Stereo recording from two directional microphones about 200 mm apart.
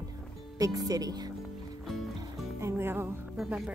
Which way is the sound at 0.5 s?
15° right (ahead or behind).